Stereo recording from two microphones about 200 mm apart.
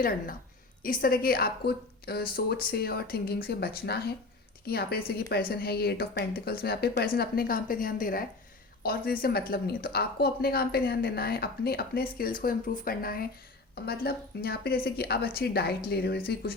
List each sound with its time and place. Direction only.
0.8 s a woman's voice: 45° left (ahead or behind)